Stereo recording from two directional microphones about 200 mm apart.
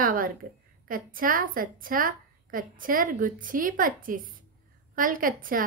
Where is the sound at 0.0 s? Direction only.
45° right (ahead or behind).